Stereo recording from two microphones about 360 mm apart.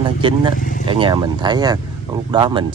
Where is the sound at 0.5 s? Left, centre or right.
Left.